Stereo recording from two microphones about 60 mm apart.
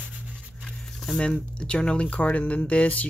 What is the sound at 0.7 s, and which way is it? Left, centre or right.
Zipper, centre.